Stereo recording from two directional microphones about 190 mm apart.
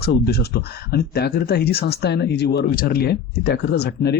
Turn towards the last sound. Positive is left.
turn(degrees=60)  # may be behind; listen again after turning